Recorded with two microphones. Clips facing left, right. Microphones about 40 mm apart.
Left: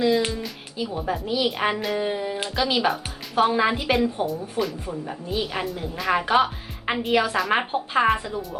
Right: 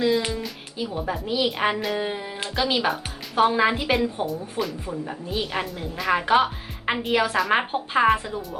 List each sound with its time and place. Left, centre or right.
0.0 s speech: centre
0.3 s music: centre
0.9 s a woman's voice: centre